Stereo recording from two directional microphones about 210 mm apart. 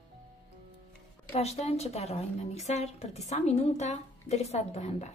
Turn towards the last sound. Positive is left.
turn(degrees=30)  # may be behind; listen again after turning